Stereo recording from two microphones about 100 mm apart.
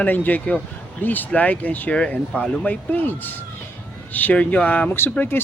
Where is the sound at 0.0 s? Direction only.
15° left (ahead or behind).